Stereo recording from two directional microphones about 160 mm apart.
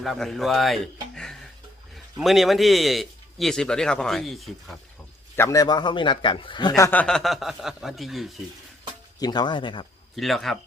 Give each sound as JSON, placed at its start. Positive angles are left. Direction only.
{"t": 0.0, "sound": "a man's voice", "side_deg": 0}
{"t": 1.1, "sound": "music", "side_deg": 5}
{"t": 2.1, "sound": "a man's voice", "side_deg": 0}
{"t": 5.4, "sound": "speech", "side_deg": 20}
{"t": 7.0, "sound": "a man's voice", "side_deg": 5}
{"t": 9.1, "sound": "speech", "side_deg": 25}
{"t": 10.2, "sound": "a man's voice", "side_deg": 0}